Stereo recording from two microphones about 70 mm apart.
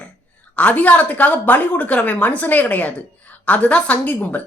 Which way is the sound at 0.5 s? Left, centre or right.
Left.